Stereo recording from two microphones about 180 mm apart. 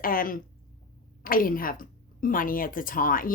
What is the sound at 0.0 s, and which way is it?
A woman's voice, 50° left (ahead or behind).